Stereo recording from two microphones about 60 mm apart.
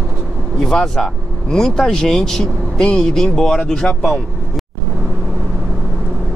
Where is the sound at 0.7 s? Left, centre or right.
Centre.